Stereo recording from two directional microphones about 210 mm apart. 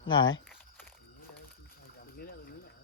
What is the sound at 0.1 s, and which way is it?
Speech, 20° left (ahead or behind).